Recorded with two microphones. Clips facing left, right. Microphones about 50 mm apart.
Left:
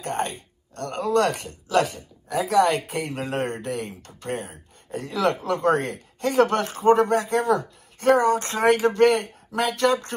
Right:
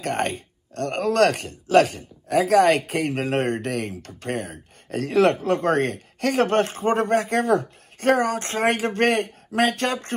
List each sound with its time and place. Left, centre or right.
0.0 s speech: right